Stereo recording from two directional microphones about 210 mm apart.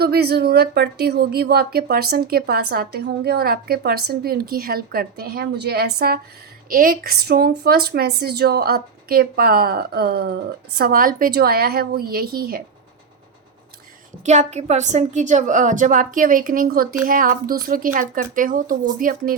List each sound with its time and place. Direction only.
0.0 s speech: 50° right (ahead or behind)
14.3 s a woman's voice: 35° right (ahead or behind)